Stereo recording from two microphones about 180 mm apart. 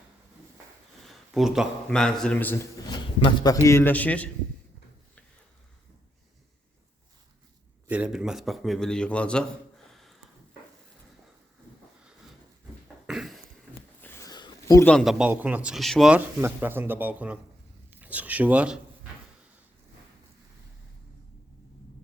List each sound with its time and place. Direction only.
1.0 s a man's voice: centre (ahead or behind)
2.8 s a man's voice: 25° left (ahead or behind); by 4.3 s 10° left (ahead or behind)
7.9 s a man's voice: 5° right (ahead or behind)
13.1 s a sound: centre (ahead or behind)
14.0 s a sound: 15° left (ahead or behind)
14.8 s speech: centre (ahead or behind)